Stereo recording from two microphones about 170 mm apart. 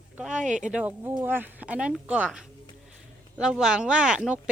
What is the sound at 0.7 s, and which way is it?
Speech, 10° right (ahead or behind).